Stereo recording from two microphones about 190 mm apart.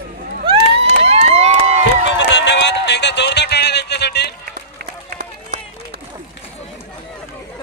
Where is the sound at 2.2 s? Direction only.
70° left (ahead or behind).